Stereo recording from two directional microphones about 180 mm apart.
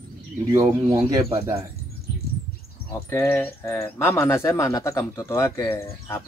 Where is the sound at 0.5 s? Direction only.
20° right (ahead or behind).